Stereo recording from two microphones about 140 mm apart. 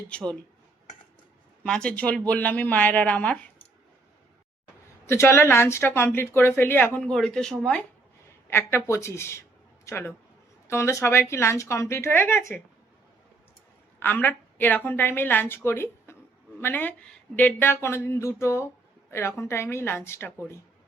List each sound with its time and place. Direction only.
0.1 s a woman's voice: 10° left (ahead or behind)
1.6 s a woman's voice: 5° left (ahead or behind)
5.0 s a woman's voice: 20° left (ahead or behind)
14.0 s a woman's voice: 15° left (ahead or behind)